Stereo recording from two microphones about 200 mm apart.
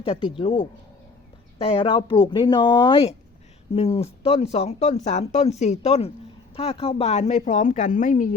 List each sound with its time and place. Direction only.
0.0 s speech: 25° left (ahead or behind)